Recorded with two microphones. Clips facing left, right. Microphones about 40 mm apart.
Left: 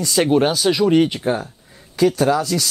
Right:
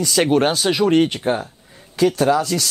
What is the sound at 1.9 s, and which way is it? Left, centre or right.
Speech, right.